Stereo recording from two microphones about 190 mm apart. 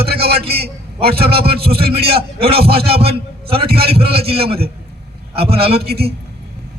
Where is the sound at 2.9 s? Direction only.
30° right (ahead or behind).